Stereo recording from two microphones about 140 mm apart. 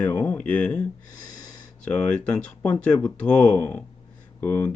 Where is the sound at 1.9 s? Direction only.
10° left (ahead or behind).